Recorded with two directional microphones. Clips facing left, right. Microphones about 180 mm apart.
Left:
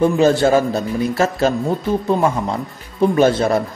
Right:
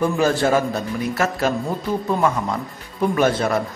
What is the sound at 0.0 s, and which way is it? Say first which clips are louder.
A man's voice: left 5 dB; 25° left (ahead or behind).